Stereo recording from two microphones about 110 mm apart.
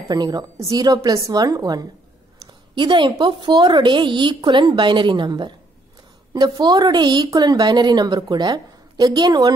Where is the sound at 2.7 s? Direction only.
45° right (ahead or behind).